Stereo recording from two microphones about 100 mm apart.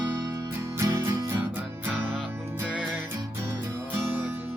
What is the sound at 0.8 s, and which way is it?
Music, 25° right (ahead or behind).